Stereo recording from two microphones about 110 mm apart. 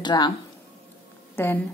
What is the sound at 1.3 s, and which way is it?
Speech, 20° left (ahead or behind).